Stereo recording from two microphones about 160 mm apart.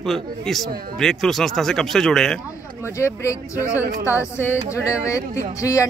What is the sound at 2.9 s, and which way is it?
Speech, 20° left (ahead or behind).